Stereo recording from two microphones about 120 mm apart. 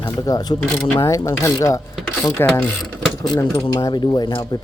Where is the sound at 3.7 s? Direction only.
35° left (ahead or behind).